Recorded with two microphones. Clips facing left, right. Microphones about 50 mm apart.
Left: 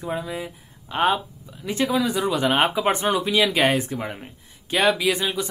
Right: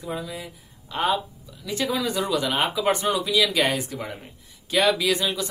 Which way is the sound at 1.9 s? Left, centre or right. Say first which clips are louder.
Left 3 dB; centre.